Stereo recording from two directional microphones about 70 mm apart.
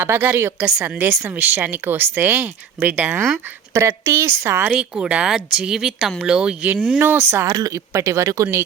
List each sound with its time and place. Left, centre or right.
0.0 s speech: right
0.6 s speech: centre
3.8 s a woman's voice: right
4.8 s speech: centre
7.0 s a woman's voice: right
7.4 s speech: right